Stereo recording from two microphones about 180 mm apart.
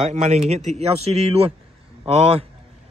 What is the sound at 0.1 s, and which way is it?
A man's voice, 40° right (ahead or behind).